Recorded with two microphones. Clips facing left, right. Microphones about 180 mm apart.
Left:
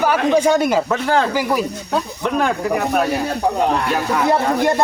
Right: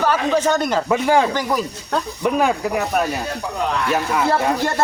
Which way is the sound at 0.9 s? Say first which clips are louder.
Right 1 dB; 10° right (ahead or behind).